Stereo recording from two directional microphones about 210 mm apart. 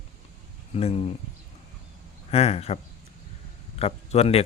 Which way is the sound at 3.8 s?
30° left (ahead or behind).